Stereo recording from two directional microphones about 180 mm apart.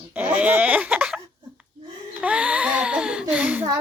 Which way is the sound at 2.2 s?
5° right (ahead or behind).